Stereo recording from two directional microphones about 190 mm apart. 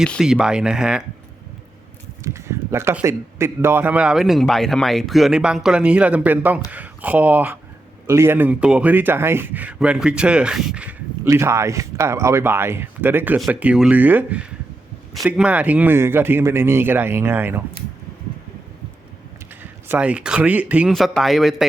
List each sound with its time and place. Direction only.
0.0 s speech: centre (ahead or behind)
2.2 s a man's voice: 15° right (ahead or behind)
19.9 s speech: 5° right (ahead or behind)